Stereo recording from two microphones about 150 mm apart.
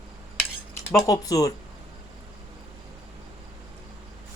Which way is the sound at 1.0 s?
25° left (ahead or behind).